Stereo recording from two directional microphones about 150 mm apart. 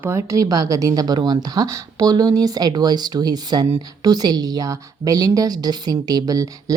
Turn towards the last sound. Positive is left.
turn(degrees=-25)  # may be behind; listen again after turning